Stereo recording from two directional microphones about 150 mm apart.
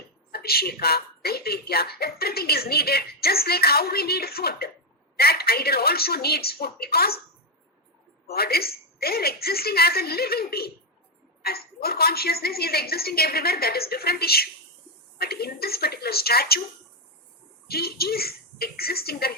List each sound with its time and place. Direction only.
0.3 s speech: 90° left
8.3 s speech: 90° left
17.7 s speech: 90° left